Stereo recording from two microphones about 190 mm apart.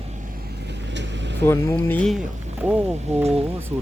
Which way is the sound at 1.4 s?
10° left (ahead or behind).